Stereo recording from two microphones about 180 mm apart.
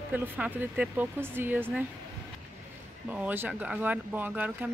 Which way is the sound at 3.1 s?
10° right (ahead or behind).